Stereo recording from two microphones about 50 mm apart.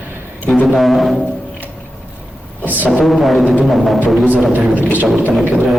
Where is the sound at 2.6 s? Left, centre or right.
Right.